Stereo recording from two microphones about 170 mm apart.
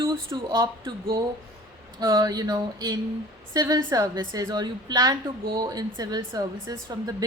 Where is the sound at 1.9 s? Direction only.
20° right (ahead or behind).